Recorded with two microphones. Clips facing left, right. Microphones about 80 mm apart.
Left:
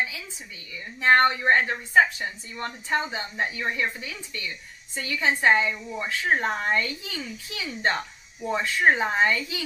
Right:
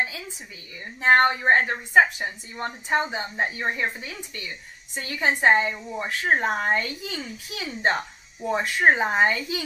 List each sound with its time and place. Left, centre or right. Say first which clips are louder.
1.0 s a woman's voice: right 1 dB; right
1.7 s a woman's voice: right 1 dB; right
7.8 s speech: right 2 dB; right